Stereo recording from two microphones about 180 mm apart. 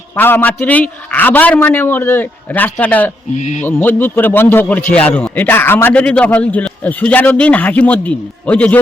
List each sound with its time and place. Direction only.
0.2 s a man's voice: 10° left (ahead or behind)
3.3 s speech: 40° left (ahead or behind)
3.7 s a man's voice: 10° left (ahead or behind)